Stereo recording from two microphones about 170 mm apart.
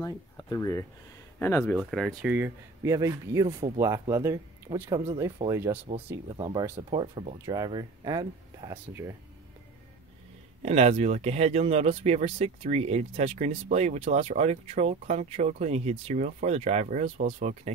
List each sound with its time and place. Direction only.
0.0 s speech: 20° left (ahead or behind)
1.8 s speech: centre (ahead or behind)
6.2 s speech: 25° right (ahead or behind)
10.6 s speech: 40° right (ahead or behind)